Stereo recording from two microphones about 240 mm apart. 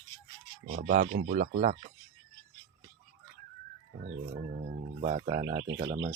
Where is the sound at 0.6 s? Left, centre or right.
Right.